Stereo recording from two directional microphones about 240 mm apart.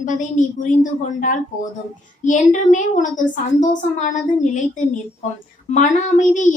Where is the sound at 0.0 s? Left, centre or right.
Left.